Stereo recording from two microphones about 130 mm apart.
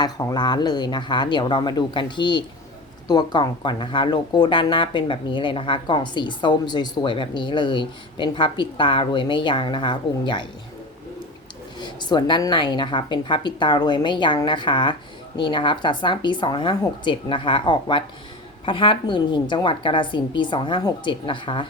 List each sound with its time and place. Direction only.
0.0 s speech: 30° left (ahead or behind)
11.8 s speech: 35° left (ahead or behind)